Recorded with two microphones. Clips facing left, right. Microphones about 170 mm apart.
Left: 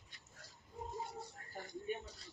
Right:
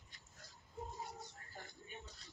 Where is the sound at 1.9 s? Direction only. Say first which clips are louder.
Left 14 dB; 65° left (ahead or behind).